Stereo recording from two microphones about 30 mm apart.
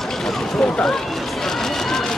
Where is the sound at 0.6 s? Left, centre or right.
Centre.